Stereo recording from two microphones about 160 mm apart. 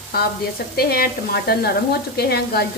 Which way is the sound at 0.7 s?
75° left (ahead or behind).